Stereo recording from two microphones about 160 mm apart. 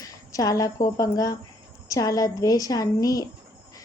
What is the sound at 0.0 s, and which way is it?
A woman's voice, 20° left (ahead or behind).